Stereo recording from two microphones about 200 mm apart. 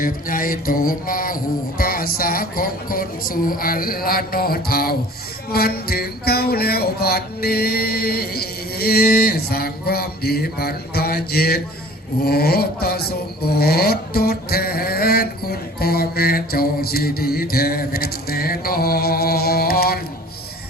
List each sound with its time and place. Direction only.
0.0 s speech: 45° left (ahead or behind)